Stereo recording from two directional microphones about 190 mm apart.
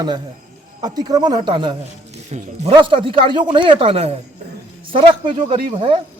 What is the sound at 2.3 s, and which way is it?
A man's voice, 35° right (ahead or behind).